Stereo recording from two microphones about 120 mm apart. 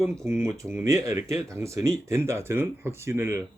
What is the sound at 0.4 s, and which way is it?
Speech, 20° right (ahead or behind).